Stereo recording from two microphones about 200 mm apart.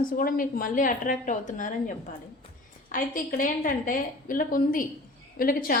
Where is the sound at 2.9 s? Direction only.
45° left (ahead or behind).